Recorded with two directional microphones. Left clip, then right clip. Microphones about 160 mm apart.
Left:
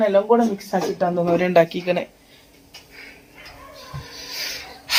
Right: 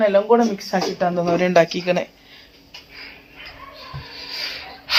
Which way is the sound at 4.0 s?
20° left (ahead or behind).